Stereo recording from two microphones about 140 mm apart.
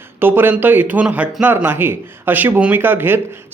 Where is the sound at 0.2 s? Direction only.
15° right (ahead or behind).